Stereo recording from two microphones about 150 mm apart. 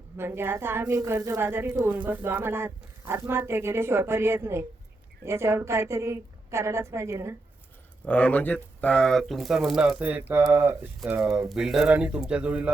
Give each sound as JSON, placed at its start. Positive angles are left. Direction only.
{"t": 0.2, "sound": "speech", "side_deg": -15}
{"t": 8.0, "sound": "speech", "side_deg": 10}
{"t": 11.2, "sound": "speech", "side_deg": 0}